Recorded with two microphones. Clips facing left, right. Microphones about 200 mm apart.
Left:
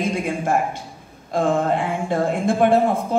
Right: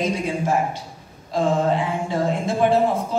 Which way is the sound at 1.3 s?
55° left (ahead or behind).